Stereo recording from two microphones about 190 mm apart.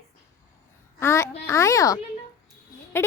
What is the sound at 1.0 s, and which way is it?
Speech, 15° left (ahead or behind).